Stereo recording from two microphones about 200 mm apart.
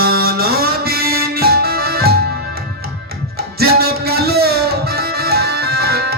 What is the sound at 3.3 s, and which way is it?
Music, 50° right (ahead or behind).